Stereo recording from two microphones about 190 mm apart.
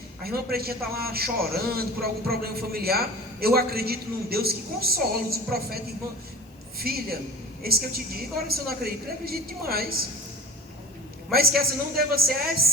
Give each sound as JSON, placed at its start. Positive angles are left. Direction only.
{"t": 0.2, "sound": "a man's voice", "side_deg": -55}
{"t": 11.3, "sound": "a man's voice", "side_deg": -55}